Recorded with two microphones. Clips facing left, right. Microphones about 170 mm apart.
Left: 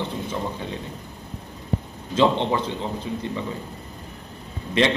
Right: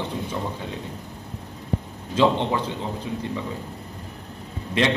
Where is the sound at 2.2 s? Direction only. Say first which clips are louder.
Even; 10° right (ahead or behind).